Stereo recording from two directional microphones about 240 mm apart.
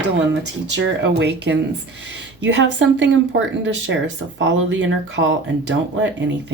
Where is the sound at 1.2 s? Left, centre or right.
Right.